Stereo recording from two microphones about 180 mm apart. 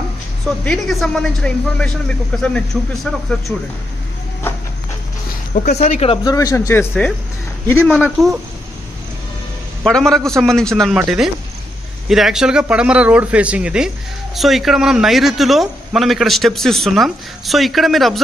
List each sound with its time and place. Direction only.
0.7 s speech: centre (ahead or behind)
5.5 s speech: 40° left (ahead or behind)
6.2 s speech: 20° left (ahead or behind)
7.9 s speech: centre (ahead or behind)
9.8 s speech: centre (ahead or behind)